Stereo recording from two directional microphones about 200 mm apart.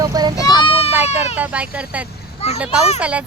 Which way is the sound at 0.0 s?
20° right (ahead or behind).